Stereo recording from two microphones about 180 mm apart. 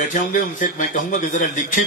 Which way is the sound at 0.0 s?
45° left (ahead or behind).